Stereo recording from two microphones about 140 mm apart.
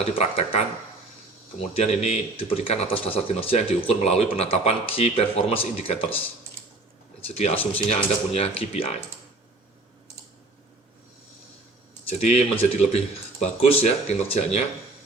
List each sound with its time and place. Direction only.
0.0 s speech: 45° left (ahead or behind)
1.7 s speech: 50° left (ahead or behind)
7.3 s speech: 50° left (ahead or behind)
7.5 s speech: 10° left (ahead or behind)
7.9 s speech: 45° left (ahead or behind)
12.0 s speech: 45° left (ahead or behind)